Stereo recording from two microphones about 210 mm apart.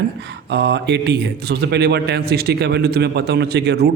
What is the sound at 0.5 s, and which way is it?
A man's voice, 55° right (ahead or behind).